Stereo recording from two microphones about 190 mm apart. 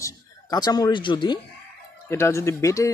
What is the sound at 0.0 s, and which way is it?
A man's voice, 20° left (ahead or behind).